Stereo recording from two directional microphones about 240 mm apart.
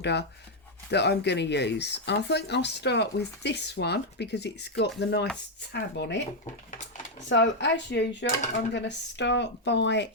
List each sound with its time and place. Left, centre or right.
0.0 s speech: left
7.3 s speech: left